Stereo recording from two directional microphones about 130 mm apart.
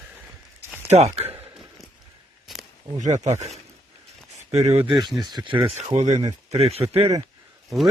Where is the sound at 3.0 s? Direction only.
65° right (ahead or behind).